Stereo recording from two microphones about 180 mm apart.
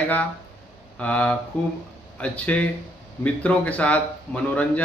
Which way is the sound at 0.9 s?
5° left (ahead or behind).